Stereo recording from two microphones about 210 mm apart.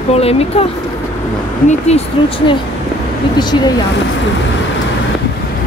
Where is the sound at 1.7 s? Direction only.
30° left (ahead or behind).